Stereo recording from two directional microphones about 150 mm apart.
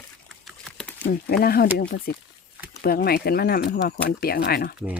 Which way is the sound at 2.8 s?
90° left.